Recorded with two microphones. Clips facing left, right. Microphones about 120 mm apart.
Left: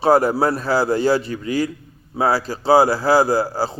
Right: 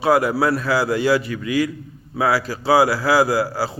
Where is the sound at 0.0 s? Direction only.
35° left (ahead or behind).